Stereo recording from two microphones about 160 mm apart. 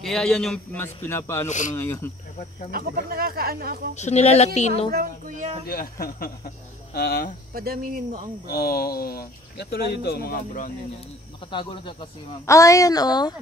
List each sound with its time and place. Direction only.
0.0 s a man's voice: 5° left (ahead or behind)
0.7 s a man's voice: 15° left (ahead or behind)
1.5 s speech: 50° left (ahead or behind)
2.7 s speech: 65° right (ahead or behind)
3.9 s speech: 45° left (ahead or behind)
4.9 s speech: 60° right (ahead or behind)
5.7 s speech: 65° left (ahead or behind)
7.5 s speech: 70° right (ahead or behind)
8.5 s speech: 80° left; by 10.7 s 60° left (ahead or behind)
11.5 s speech: 30° left (ahead or behind)
12.4 s speech: 20° left (ahead or behind)